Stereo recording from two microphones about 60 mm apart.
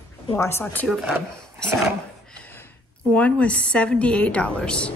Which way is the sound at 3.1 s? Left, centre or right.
Left.